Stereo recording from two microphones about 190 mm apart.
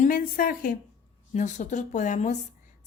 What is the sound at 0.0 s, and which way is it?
A woman's voice, 45° left (ahead or behind).